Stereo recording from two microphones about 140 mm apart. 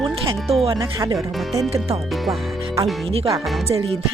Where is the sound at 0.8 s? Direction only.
20° right (ahead or behind).